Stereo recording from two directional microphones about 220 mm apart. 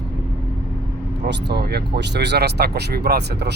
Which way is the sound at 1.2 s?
50° right (ahead or behind).